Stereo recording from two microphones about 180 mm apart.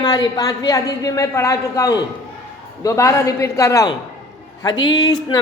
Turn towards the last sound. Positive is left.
turn(degrees=20)  # may be behind; listen again after turning